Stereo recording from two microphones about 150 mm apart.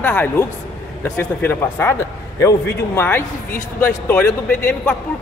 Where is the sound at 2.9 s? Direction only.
15° left (ahead or behind).